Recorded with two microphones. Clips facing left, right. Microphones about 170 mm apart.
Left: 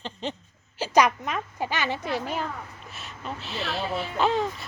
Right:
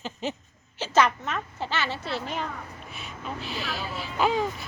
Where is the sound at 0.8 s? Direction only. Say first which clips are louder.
Left 2 dB; 15° left (ahead or behind).